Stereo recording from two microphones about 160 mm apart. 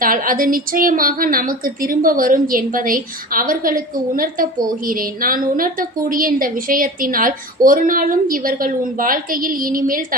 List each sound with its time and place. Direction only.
0.0 s a woman's voice: 60° right (ahead or behind)